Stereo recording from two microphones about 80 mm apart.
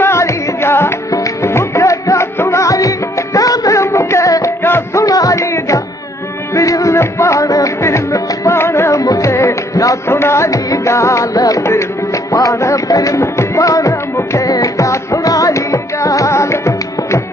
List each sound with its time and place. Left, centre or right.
0.0 s music: left
5.0 s music: left
9.0 s music: left